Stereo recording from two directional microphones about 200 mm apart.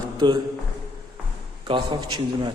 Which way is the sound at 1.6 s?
25° right (ahead or behind).